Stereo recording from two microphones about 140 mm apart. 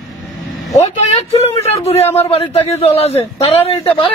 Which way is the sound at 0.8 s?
50° left (ahead or behind).